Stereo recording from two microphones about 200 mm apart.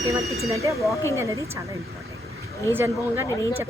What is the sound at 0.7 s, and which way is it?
Speech, centre (ahead or behind).